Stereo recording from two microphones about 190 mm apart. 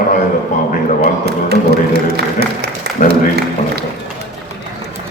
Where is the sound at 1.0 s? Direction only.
55° right (ahead or behind).